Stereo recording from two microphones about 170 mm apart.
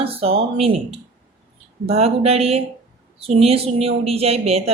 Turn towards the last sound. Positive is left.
turn(degrees=-35)  # may be behind; listen again after turning